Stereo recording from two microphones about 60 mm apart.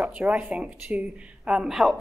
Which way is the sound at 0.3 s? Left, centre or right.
Centre.